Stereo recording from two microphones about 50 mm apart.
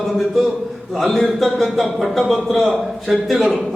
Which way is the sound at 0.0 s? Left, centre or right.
Centre.